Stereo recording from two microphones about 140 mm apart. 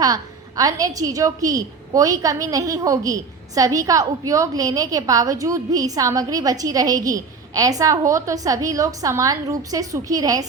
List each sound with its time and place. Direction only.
0.0 s a woman's voice: 25° right (ahead or behind)